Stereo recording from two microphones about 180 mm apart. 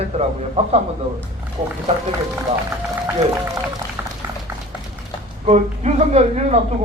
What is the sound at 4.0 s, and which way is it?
Boiling, 10° right (ahead or behind).